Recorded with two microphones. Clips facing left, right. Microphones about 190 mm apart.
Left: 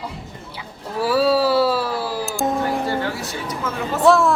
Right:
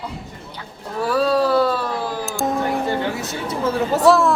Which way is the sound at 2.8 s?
20° right (ahead or behind).